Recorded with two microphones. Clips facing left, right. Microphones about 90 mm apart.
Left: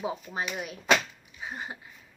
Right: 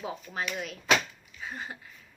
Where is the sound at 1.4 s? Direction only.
20° left (ahead or behind).